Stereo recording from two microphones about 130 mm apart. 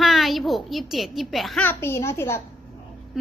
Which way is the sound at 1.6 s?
15° left (ahead or behind).